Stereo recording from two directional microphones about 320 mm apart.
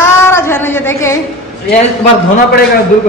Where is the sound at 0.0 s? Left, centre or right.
Centre.